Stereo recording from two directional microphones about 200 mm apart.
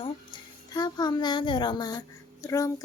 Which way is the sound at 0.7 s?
20° left (ahead or behind).